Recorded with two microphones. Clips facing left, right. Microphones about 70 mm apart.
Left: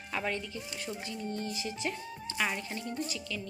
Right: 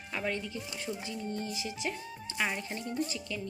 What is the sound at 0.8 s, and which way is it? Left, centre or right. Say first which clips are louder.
Speech: right 1 dB; centre.